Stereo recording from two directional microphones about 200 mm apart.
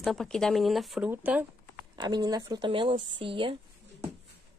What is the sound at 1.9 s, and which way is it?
Speech, 20° right (ahead or behind).